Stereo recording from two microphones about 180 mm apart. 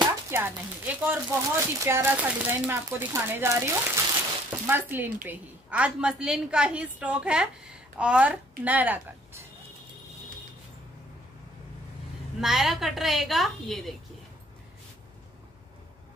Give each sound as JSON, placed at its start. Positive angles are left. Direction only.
{"t": 0.3, "sound": "speech", "side_deg": -10}
{"t": 12.4, "sound": "a woman's voice", "side_deg": 0}